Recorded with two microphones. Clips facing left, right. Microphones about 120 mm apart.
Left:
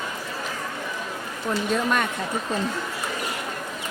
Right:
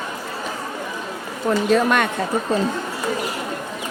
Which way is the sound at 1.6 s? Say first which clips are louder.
Right 6 dB; 85° right.